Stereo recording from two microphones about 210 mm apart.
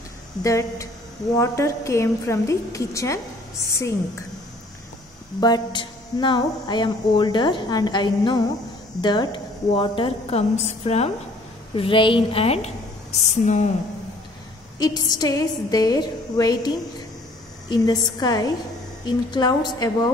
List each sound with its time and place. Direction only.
0.4 s a woman's voice: 15° left (ahead or behind)
5.4 s a woman's voice: 20° left (ahead or behind)
14.8 s a woman's voice: 15° left (ahead or behind)